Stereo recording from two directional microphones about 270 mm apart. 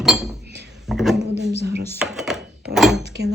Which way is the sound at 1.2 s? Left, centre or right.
Right.